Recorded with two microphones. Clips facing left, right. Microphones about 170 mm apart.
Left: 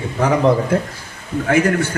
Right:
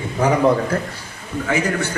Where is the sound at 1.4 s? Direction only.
50° left (ahead or behind).